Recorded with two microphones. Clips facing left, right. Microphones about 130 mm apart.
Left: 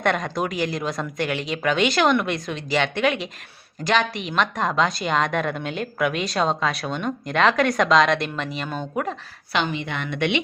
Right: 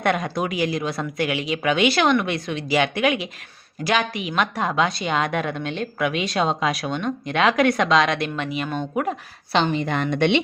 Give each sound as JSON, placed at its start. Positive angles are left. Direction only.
{"t": 0.0, "sound": "speech", "side_deg": -5}
{"t": 9.5, "sound": "a woman's voice", "side_deg": -35}